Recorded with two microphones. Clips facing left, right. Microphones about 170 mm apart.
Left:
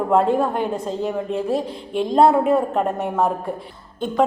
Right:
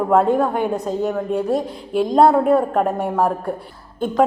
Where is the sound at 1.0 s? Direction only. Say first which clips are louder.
Right 2 dB; centre (ahead or behind).